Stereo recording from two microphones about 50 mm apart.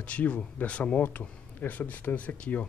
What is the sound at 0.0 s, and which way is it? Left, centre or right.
Speech, left.